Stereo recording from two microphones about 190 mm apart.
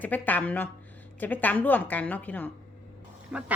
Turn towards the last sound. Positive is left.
turn(degrees=-5)  # may be behind; listen again after turning